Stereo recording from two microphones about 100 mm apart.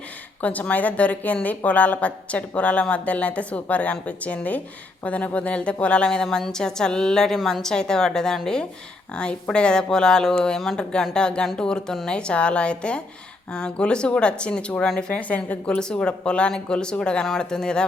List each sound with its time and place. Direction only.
0.4 s speech: 15° left (ahead or behind)